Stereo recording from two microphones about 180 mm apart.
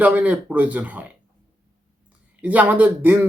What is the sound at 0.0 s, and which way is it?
Speech, 10° right (ahead or behind).